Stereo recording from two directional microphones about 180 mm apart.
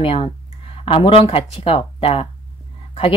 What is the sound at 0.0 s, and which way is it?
A woman's voice, 30° left (ahead or behind).